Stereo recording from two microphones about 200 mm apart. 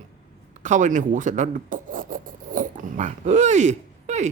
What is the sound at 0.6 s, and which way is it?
Speech, 40° right (ahead or behind).